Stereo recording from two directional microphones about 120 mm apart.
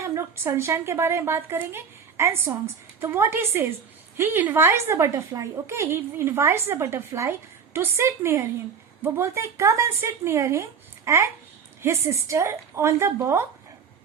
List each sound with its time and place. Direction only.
0.0 s a woman's voice: 25° right (ahead or behind)